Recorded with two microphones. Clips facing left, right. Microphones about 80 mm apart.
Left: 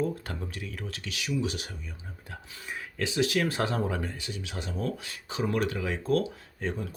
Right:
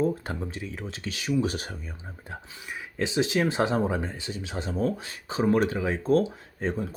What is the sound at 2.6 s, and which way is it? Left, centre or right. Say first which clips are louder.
Speech: left 3 dB; centre.